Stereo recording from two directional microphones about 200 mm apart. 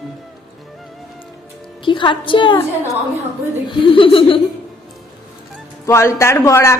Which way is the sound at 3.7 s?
25° left (ahead or behind).